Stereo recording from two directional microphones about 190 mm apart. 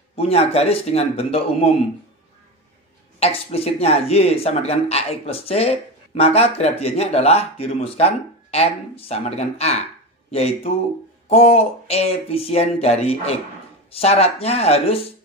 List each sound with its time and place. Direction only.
0.1 s speech: 35° left (ahead or behind)
3.2 s speech: 30° left (ahead or behind)